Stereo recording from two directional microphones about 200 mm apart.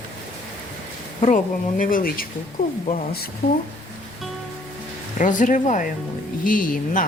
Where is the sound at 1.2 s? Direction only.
40° left (ahead or behind).